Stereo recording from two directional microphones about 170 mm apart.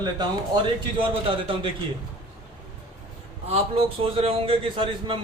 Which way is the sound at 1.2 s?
30° right (ahead or behind).